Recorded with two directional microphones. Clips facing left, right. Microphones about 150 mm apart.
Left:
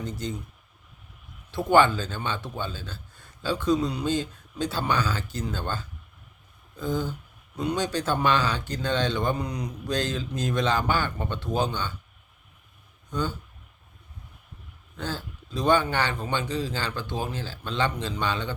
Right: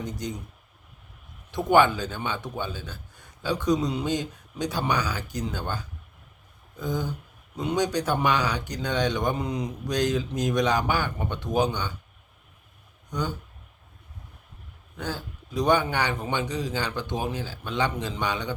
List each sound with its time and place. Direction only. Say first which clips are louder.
0.0 s speech: even; 15° right (ahead or behind)
1.5 s speech: even; 15° right (ahead or behind)
13.1 s speech: left 1 dB; 15° right (ahead or behind)
14.9 s speech: even; 15° right (ahead or behind)